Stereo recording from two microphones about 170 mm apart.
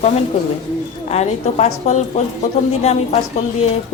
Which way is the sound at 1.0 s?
40° left (ahead or behind).